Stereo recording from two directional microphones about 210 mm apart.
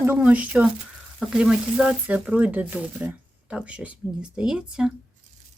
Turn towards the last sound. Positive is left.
turn(degrees=-5)  # may be behind; listen again after turning